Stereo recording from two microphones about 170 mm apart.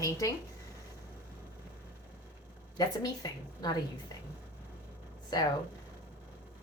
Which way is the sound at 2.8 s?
20° left (ahead or behind).